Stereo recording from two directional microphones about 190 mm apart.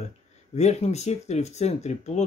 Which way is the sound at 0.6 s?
35° left (ahead or behind).